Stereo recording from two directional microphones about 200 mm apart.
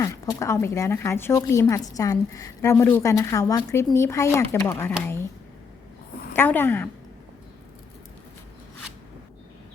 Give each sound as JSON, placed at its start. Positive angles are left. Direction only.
{"t": 0.0, "sound": "speech", "side_deg": 15}
{"t": 6.3, "sound": "speech", "side_deg": 10}